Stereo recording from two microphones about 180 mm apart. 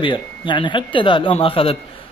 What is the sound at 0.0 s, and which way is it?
Speech, 25° left (ahead or behind).